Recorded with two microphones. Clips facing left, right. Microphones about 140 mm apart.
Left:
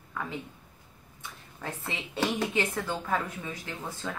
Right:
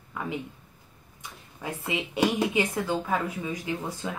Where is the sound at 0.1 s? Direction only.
15° right (ahead or behind).